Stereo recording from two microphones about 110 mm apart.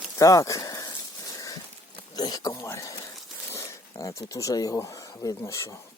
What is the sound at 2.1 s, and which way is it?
Speech, 35° left (ahead or behind).